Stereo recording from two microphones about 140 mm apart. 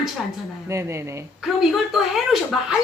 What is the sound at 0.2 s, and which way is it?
Speech, centre (ahead or behind).